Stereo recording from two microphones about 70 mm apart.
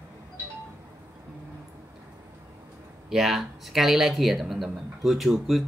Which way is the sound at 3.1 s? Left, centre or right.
Centre.